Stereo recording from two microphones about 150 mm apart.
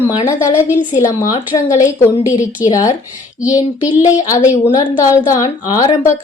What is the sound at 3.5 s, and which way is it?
A woman's voice, 25° left (ahead or behind).